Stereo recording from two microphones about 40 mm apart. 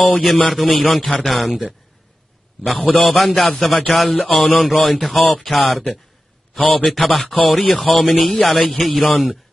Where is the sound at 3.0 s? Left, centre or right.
Centre.